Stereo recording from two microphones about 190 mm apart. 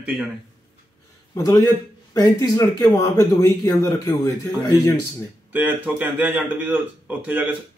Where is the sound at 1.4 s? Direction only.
20° left (ahead or behind).